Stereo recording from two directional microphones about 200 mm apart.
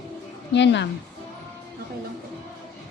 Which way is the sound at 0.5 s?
60° left (ahead or behind).